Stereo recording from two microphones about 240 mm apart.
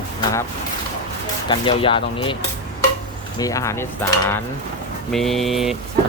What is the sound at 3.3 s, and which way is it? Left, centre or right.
Speech, centre.